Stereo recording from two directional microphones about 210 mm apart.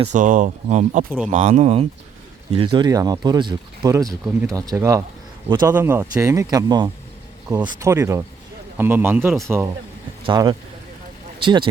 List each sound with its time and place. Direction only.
0.0 s speech: 35° right (ahead or behind); by 9.6 s 10° right (ahead or behind)
10.2 s speech: 20° right (ahead or behind)